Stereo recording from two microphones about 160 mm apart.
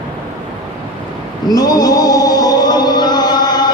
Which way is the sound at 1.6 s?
25° left (ahead or behind).